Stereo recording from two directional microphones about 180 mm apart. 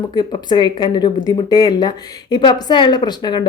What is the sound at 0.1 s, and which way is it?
Speech, 25° left (ahead or behind).